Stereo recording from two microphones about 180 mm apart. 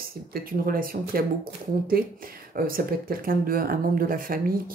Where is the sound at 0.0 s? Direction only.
55° right (ahead or behind).